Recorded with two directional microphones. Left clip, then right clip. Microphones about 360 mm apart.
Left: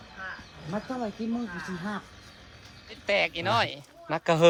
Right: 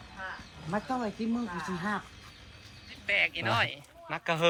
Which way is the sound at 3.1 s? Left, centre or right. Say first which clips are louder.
Left 2 dB; centre.